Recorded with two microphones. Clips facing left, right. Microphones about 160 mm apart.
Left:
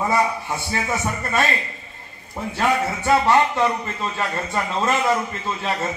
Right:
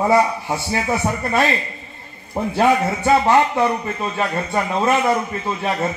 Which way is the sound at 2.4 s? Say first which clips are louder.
Right 6 dB; 55° right (ahead or behind).